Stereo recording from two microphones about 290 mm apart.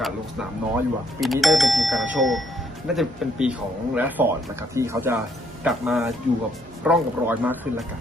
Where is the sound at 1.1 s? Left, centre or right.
Centre.